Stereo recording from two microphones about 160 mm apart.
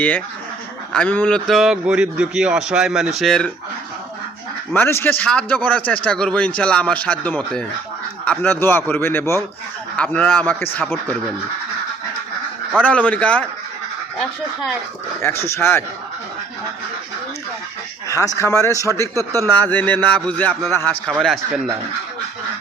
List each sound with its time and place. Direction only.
0.9 s a man's voice: 10° left (ahead or behind)
4.7 s a man's voice: 15° left (ahead or behind)
12.7 s a man's voice: 10° left (ahead or behind)
15.2 s a man's voice: 15° left (ahead or behind)
18.1 s speech: 20° left (ahead or behind)
19.1 s speech: 20° right (ahead or behind)
19.5 s a man's voice: 10° left (ahead or behind)